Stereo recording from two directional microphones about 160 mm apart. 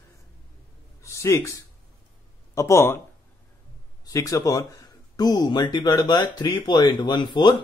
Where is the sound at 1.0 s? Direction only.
20° left (ahead or behind).